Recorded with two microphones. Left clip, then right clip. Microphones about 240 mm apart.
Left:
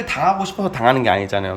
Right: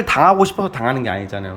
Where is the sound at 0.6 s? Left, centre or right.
Centre.